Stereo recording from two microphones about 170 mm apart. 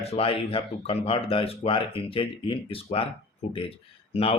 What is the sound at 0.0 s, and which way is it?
Speech, 35° left (ahead or behind).